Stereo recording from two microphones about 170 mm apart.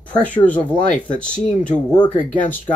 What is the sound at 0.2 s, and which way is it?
Speech, 10° left (ahead or behind).